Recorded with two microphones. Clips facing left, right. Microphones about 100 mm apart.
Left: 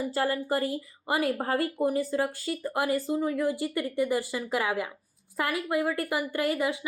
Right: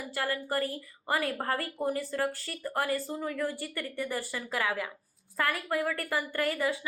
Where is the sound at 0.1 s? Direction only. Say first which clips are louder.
Left 2 dB; 30° left (ahead or behind).